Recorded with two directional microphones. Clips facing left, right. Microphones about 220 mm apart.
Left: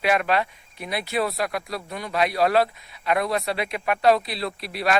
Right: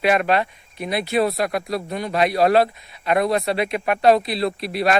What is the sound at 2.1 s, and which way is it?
Speech, 45° right (ahead or behind).